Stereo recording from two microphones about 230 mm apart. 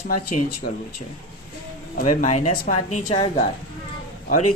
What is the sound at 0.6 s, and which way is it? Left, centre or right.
Speech, left.